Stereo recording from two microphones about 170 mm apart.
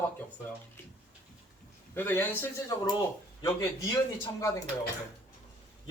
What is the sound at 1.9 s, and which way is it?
Speech, 10° left (ahead or behind).